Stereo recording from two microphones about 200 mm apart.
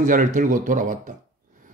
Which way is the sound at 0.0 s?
40° right (ahead or behind).